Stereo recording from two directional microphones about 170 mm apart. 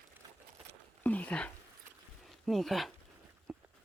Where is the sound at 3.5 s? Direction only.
5° right (ahead or behind).